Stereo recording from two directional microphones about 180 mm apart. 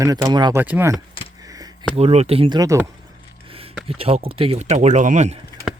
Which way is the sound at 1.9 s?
35° right (ahead or behind).